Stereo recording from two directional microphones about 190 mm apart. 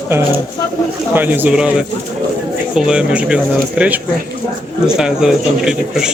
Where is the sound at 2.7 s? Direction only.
5° right (ahead or behind).